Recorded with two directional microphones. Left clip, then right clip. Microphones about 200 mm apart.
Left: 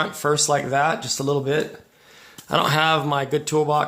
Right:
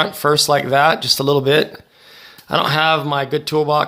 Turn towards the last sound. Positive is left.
turn(degrees=-25)  # may be behind; listen again after turning